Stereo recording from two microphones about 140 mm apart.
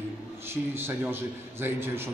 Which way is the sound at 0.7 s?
15° right (ahead or behind).